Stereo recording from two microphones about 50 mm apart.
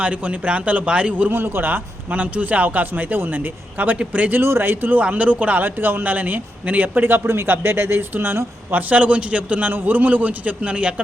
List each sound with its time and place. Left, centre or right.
0.0 s a man's voice: right
1.3 s a man's voice: right
2.1 s a man's voice: right
4.4 s a man's voice: right
5.0 s a man's voice: right
5.6 s a man's voice: right
8.7 s a man's voice: right